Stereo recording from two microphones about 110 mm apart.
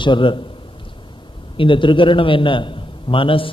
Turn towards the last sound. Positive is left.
turn(degrees=55)  # may be behind; listen again after turning